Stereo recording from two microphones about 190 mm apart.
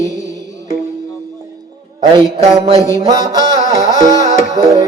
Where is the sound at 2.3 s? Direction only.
35° right (ahead or behind).